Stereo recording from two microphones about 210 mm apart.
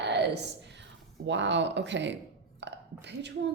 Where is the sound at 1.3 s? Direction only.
60° right (ahead or behind).